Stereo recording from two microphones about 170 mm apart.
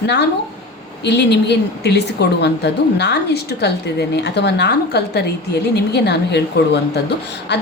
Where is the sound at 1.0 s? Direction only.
85° left.